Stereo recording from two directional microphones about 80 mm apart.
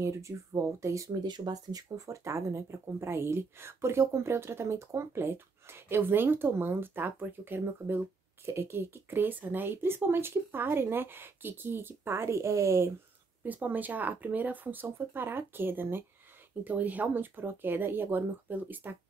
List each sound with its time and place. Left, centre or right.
0.0 s speech: right
1.2 s speech: right
13.4 s speech: centre